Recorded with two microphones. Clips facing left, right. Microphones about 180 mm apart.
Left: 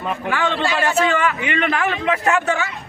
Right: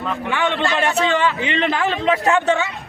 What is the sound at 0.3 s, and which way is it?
Speech, 20° right (ahead or behind).